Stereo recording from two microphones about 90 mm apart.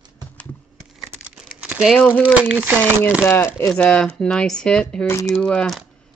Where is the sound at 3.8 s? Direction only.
10° left (ahead or behind).